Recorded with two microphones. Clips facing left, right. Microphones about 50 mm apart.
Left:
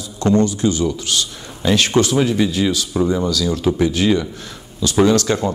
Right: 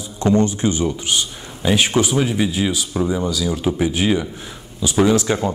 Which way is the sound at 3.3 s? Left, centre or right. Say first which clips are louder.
Left 2 dB; centre.